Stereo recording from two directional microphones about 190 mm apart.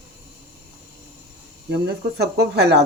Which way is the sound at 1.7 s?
60° right (ahead or behind).